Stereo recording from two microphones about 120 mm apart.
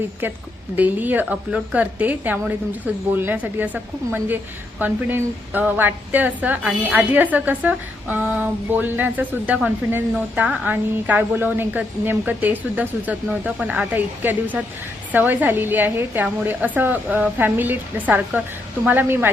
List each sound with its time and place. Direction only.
0.8 s a woman's voice: 15° right (ahead or behind)
4.8 s a woman's voice: 15° right (ahead or behind)